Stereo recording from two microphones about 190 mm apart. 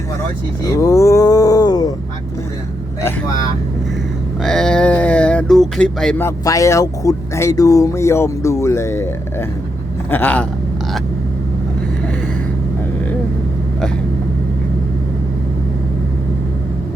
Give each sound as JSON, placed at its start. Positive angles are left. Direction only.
{"t": 0.8, "sound": "a sound", "side_deg": 15}
{"t": 3.0, "sound": "speech", "side_deg": 20}
{"t": 4.4, "sound": "a man's voice", "side_deg": 5}